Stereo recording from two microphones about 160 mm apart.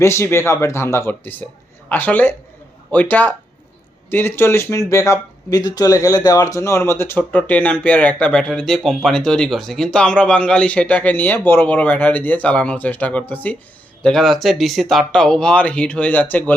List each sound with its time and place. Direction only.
0.0 s speech: 15° left (ahead or behind)